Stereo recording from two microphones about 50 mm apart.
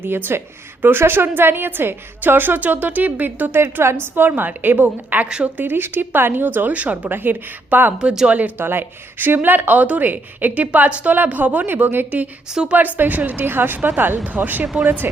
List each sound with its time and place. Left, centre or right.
0.0 s a woman's voice: right
3.6 s a woman's voice: right
4.0 s a woman's voice: right
6.7 s speech: right
7.1 s speech: right
11.1 s a woman's voice: right